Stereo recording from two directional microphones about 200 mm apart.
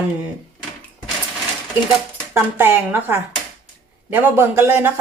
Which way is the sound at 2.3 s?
10° right (ahead or behind).